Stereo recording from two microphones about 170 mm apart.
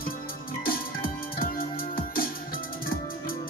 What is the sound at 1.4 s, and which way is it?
Music, 55° left (ahead or behind).